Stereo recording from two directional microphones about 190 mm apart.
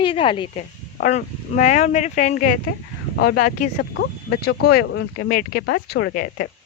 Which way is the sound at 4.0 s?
65° left (ahead or behind).